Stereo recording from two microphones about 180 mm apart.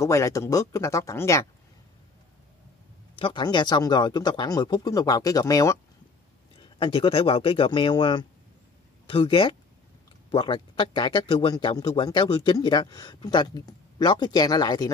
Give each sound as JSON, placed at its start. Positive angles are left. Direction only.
{"t": 0.0, "sound": "speech", "side_deg": 15}
{"t": 3.2, "sound": "speech", "side_deg": 25}
{"t": 6.6, "sound": "speech", "side_deg": 30}